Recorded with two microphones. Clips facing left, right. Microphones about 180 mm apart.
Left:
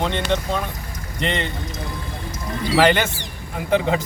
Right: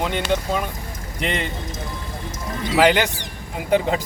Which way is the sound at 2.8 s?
10° right (ahead or behind).